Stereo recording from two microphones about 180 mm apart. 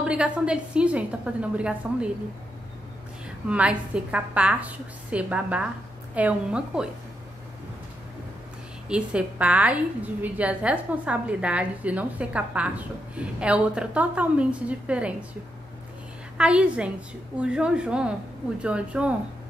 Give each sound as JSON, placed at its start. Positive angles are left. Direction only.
{"t": 0.0, "sound": "a woman's voice", "side_deg": -5}
{"t": 3.4, "sound": "a woman's voice", "side_deg": -5}
{"t": 8.8, "sound": "a woman's voice", "side_deg": -5}
{"t": 16.3, "sound": "a woman's voice", "side_deg": -5}